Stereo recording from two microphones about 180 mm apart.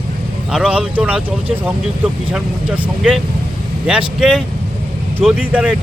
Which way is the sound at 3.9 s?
5° right (ahead or behind).